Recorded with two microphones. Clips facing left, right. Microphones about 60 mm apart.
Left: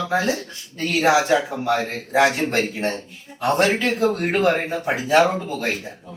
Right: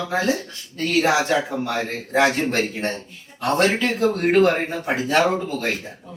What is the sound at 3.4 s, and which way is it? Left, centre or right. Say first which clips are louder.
Speech: left 1 dB; centre.